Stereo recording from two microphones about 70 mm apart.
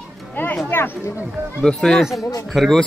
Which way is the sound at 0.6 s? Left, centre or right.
Left.